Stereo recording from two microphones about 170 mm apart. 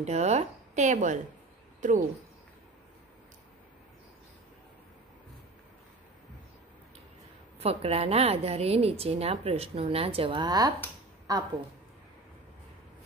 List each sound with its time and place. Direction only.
0.0 s speech: 40° right (ahead or behind)
7.6 s a woman's voice: 35° right (ahead or behind); by 11.4 s 20° right (ahead or behind)